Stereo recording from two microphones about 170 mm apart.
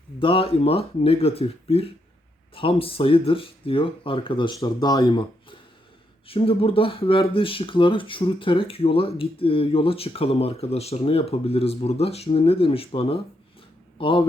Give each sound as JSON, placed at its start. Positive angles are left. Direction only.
{"t": 0.2, "sound": "a man's voice", "side_deg": 30}